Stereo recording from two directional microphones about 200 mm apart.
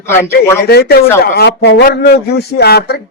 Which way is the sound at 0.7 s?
55° left (ahead or behind).